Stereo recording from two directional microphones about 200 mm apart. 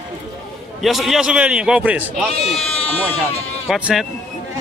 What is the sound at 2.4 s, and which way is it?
Speech, 30° left (ahead or behind).